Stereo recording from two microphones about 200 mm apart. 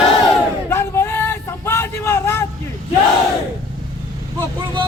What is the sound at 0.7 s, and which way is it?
Vehicle, 10° left (ahead or behind).